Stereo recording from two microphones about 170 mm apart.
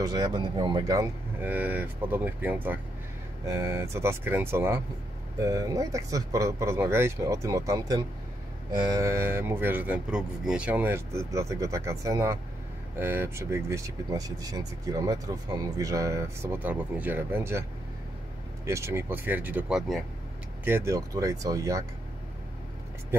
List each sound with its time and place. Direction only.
0.0 s speech: 25° right (ahead or behind)
18.7 s speech: 15° right (ahead or behind)